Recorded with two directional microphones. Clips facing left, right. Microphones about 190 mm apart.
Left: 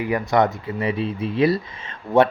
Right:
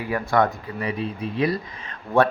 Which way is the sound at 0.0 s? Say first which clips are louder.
Left 2 dB; 20° left (ahead or behind).